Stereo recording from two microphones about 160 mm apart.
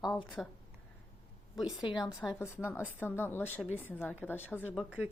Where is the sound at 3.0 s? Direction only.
15° left (ahead or behind).